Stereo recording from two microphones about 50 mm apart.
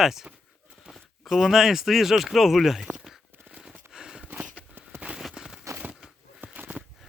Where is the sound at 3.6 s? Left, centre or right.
Centre.